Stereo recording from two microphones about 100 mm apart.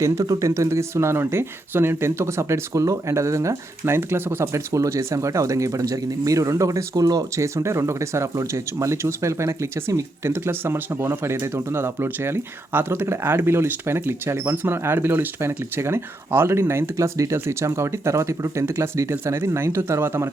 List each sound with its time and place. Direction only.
0.0 s speech: 35° right (ahead or behind)